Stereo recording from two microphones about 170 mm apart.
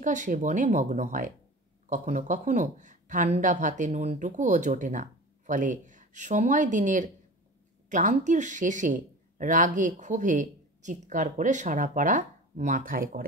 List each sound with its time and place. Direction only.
0.0 s speech: 50° right (ahead or behind)